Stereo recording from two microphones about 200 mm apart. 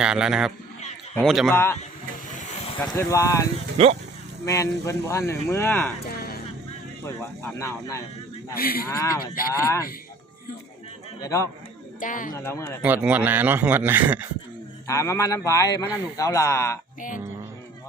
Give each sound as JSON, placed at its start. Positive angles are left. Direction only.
{"t": 0.0, "sound": "a man's voice", "side_deg": -5}
{"t": 1.5, "sound": "speech", "side_deg": 10}
{"t": 2.8, "sound": "speech", "side_deg": 15}
{"t": 3.8, "sound": "speech", "side_deg": -30}
{"t": 4.4, "sound": "speech", "side_deg": 15}
{"t": 6.1, "sound": "music", "side_deg": 50}
{"t": 7.0, "sound": "speech", "side_deg": 10}
{"t": 8.5, "sound": "speech", "side_deg": 45}
{"t": 8.9, "sound": "speech", "side_deg": 15}
{"t": 11.2, "sound": "speech", "side_deg": 15}
{"t": 11.9, "sound": "speech", "side_deg": 40}
{"t": 12.3, "sound": "speech", "side_deg": 15}
{"t": 12.8, "sound": "a man's voice", "side_deg": -5}
{"t": 14.8, "sound": "speech", "side_deg": 15}